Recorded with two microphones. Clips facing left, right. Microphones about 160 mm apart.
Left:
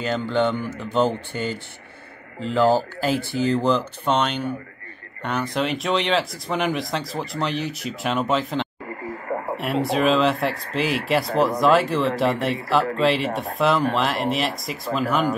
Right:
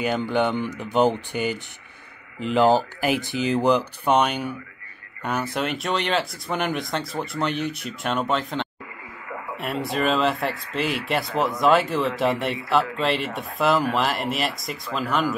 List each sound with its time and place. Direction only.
0.0 s speech: 15° right (ahead or behind)
8.8 s radio: 45° left (ahead or behind)
9.6 s speech: centre (ahead or behind)